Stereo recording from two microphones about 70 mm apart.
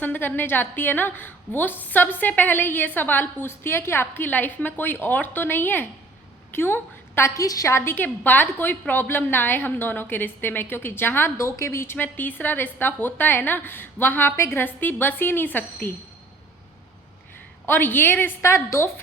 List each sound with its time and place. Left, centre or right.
0.0 s a woman's voice: left
7.4 s a woman's voice: left
7.7 s a woman's voice: left
11.3 s a woman's voice: left
11.9 s a woman's voice: left
14.3 s a woman's voice: left
14.8 s a woman's voice: left
17.7 s a woman's voice: left
18.4 s a woman's voice: left